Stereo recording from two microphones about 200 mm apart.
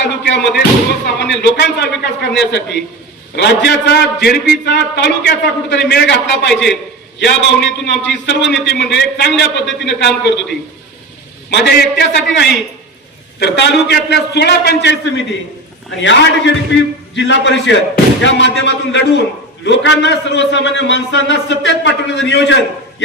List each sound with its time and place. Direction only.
0.0 s a sound: 60° left (ahead or behind)
1.2 s a man's voice: 55° left (ahead or behind)
11.5 s a man's voice: 55° left (ahead or behind)